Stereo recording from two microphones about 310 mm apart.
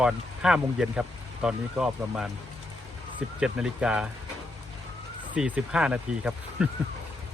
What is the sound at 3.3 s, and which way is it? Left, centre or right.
Speech, centre.